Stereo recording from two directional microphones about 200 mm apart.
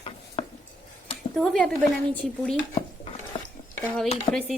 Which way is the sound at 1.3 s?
Centre (ahead or behind).